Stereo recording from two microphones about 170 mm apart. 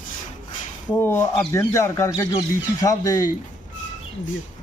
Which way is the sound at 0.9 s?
15° left (ahead or behind).